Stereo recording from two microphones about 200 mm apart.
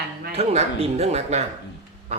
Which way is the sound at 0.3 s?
30° right (ahead or behind).